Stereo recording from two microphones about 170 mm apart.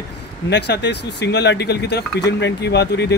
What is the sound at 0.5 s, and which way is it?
Speech, 85° left.